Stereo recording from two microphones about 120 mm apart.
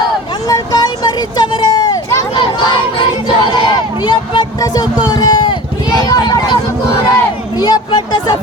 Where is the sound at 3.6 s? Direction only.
40° left (ahead or behind).